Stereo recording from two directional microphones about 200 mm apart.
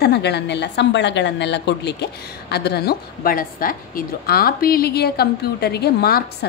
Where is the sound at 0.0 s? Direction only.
55° left (ahead or behind).